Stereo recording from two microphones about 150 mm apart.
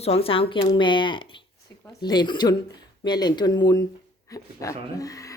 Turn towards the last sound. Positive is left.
turn(degrees=20)  # may be behind; listen again after turning